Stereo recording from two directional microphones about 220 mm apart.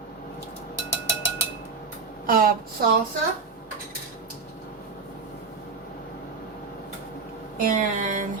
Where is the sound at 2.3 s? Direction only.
40° right (ahead or behind).